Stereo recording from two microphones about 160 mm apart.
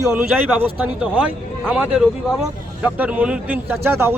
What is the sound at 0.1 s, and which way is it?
A man's voice, 10° right (ahead or behind).